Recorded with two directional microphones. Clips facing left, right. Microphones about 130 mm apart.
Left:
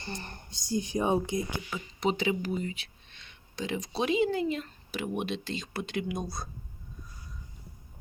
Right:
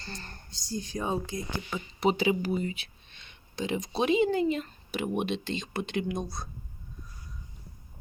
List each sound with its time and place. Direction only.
0.0 s speech: 15° left (ahead or behind)
1.7 s speech: 5° right (ahead or behind)